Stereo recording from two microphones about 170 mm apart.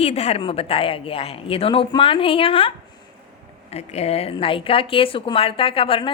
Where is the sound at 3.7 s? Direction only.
40° left (ahead or behind).